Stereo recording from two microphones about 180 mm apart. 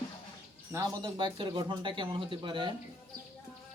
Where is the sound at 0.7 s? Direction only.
20° right (ahead or behind).